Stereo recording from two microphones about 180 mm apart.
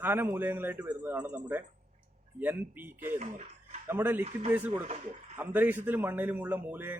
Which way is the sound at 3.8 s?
10° right (ahead or behind).